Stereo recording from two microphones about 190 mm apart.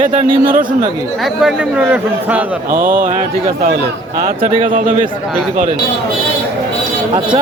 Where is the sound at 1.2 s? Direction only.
5° right (ahead or behind).